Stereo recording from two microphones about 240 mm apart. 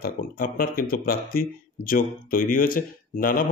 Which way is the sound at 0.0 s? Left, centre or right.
Left.